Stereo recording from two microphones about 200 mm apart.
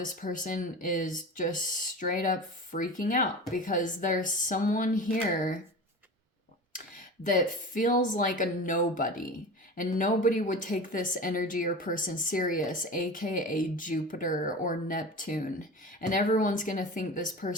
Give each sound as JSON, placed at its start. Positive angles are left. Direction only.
{"t": 0.0, "sound": "a woman's voice", "side_deg": 40}
{"t": 6.7, "sound": "a woman's voice", "side_deg": 40}